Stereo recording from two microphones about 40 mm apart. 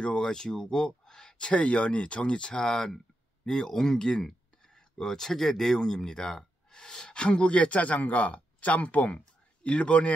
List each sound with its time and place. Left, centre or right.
0.0 s speech: left